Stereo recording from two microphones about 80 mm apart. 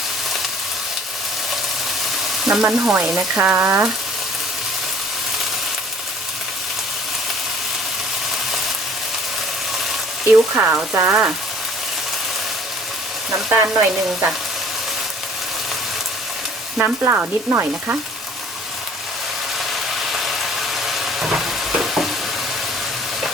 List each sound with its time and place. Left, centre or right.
2.4 s frying: centre
10.5 s frying: right
13.5 s frying: right
16.7 s frying: centre
20.1 s frying: centre